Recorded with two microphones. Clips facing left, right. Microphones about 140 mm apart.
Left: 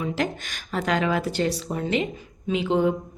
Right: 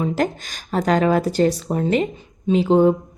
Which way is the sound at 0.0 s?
40° right (ahead or behind).